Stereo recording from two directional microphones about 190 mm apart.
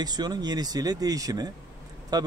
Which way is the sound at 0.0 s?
20° right (ahead or behind).